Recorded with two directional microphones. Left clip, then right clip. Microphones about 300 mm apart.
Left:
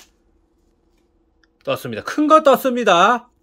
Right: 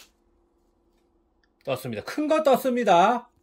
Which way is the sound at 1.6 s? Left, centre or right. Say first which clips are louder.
Left 7 dB; centre.